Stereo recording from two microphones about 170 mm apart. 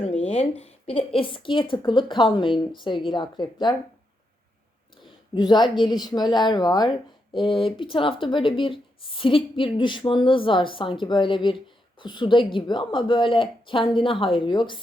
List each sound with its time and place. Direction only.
0.0 s a woman's voice: 35° left (ahead or behind)
5.3 s speech: 25° left (ahead or behind)